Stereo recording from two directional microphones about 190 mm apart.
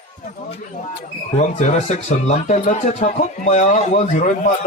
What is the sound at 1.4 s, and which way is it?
Speech, 40° left (ahead or behind).